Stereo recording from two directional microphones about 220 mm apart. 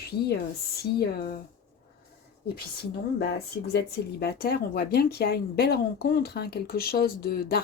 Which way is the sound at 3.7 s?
45° left (ahead or behind).